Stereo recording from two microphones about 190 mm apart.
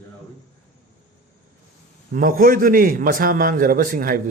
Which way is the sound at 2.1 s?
50° right (ahead or behind).